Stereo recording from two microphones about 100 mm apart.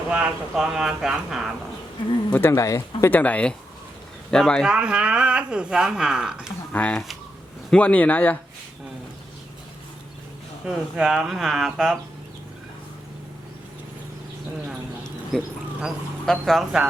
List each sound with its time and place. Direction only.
0.1 s speech: 10° right (ahead or behind)
2.3 s speech: 25° left (ahead or behind)
3.1 s speech: 15° left (ahead or behind)
4.6 s speech: 10° right (ahead or behind)
6.7 s speech: 15° left (ahead or behind)
10.7 s speech: 5° right (ahead or behind)
15.3 s speech: centre (ahead or behind)